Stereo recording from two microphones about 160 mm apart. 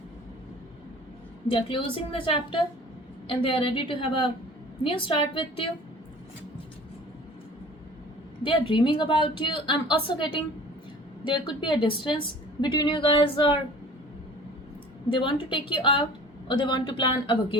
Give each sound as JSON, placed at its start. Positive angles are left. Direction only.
{"t": 1.5, "sound": "a woman's voice", "side_deg": 35}
{"t": 8.4, "sound": "a woman's voice", "side_deg": 30}
{"t": 15.1, "sound": "a woman's voice", "side_deg": 30}